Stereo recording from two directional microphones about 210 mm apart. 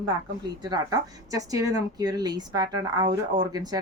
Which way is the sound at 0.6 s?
20° right (ahead or behind).